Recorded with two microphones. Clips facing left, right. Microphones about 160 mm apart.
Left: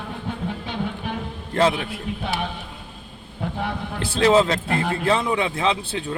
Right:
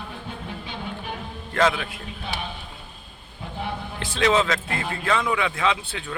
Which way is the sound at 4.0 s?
35° left (ahead or behind).